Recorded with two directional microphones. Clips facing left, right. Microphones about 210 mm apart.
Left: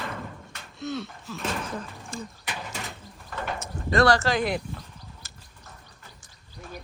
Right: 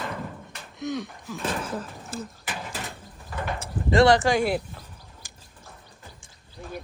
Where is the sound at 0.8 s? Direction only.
15° right (ahead or behind).